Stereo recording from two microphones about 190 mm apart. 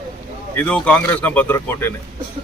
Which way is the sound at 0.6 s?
5° left (ahead or behind).